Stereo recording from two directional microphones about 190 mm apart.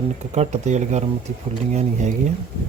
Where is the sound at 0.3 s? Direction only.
40° right (ahead or behind).